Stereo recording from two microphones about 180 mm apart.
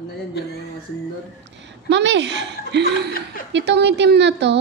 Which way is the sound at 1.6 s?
80° right.